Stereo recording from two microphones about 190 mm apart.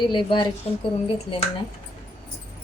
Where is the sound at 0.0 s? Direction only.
25° left (ahead or behind).